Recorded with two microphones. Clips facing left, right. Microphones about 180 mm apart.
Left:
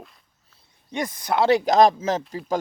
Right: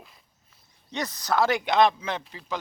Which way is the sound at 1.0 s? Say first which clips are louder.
Left 3 dB; 25° left (ahead or behind).